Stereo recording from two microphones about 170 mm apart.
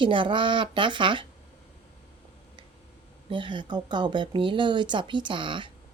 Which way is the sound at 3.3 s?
30° right (ahead or behind).